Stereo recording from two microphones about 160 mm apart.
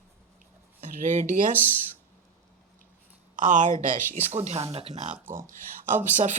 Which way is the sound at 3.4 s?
50° right (ahead or behind).